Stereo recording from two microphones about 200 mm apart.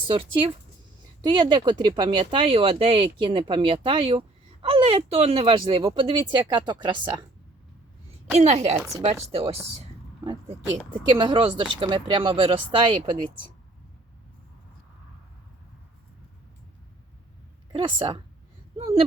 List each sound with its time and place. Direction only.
0.1 s speech: 25° right (ahead or behind)
8.4 s a woman's voice: 30° right (ahead or behind)
10.9 s speech: 25° right (ahead or behind)
17.7 s speech: 25° right (ahead or behind)